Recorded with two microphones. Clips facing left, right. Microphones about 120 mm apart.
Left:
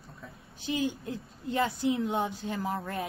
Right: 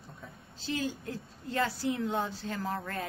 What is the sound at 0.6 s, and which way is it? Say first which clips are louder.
A woman's voice: left 3 dB; 15° left (ahead or behind).